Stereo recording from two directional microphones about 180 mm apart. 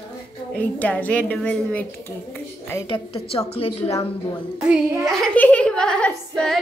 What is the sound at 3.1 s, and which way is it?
Speech, 30° left (ahead or behind).